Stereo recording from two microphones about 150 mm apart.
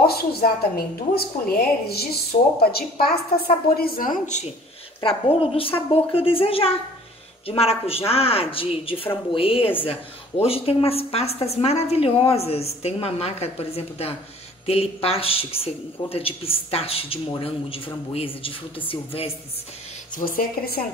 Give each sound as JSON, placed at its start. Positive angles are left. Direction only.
{"t": 0.0, "sound": "a woman's voice", "side_deg": 90}
{"t": 3.7, "sound": "a woman's voice", "side_deg": 75}
{"t": 5.0, "sound": "a woman's voice", "side_deg": 40}
{"t": 20.1, "sound": "speech", "side_deg": 70}